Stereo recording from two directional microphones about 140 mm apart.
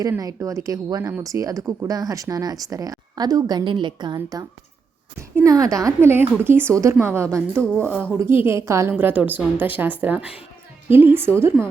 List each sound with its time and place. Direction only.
0.0 s speech: 25° right (ahead or behind)